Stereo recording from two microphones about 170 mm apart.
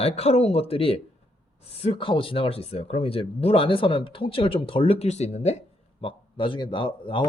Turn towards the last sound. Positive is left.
turn(degrees=30)  # may be behind; listen again after turning